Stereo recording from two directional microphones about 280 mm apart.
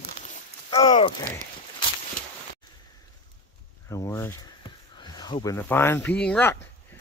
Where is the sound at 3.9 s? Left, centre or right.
Centre.